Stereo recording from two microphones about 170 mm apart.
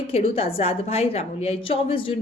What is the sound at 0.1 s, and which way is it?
A woman's voice, 35° left (ahead or behind).